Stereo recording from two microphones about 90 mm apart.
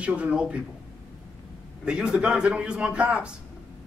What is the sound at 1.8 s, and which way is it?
A man's voice, 10° right (ahead or behind).